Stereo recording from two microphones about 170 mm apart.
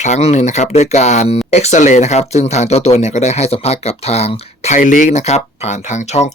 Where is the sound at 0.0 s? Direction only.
40° left (ahead or behind).